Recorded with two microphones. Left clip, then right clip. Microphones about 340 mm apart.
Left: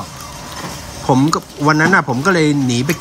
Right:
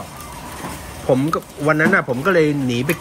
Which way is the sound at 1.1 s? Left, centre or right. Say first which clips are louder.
Left 3 dB; centre.